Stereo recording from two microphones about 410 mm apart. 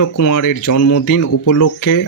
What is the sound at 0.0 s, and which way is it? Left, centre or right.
Speech, left.